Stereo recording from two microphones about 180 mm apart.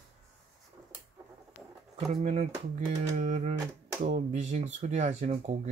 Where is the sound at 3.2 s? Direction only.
45° right (ahead or behind).